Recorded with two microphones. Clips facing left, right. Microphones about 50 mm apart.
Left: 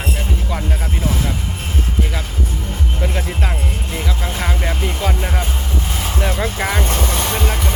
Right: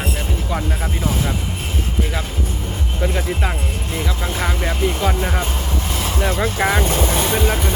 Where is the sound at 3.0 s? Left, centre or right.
Centre.